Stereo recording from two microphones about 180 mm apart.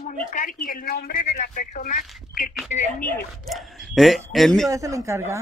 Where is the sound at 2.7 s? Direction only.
50° left (ahead or behind).